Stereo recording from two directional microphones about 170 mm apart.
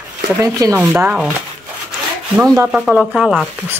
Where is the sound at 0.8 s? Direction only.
10° right (ahead or behind).